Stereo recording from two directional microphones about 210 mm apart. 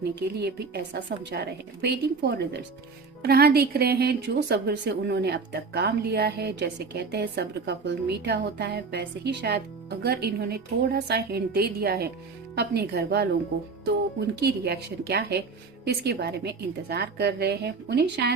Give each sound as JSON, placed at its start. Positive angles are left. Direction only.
{"t": 0.0, "sound": "a woman's voice", "side_deg": -50}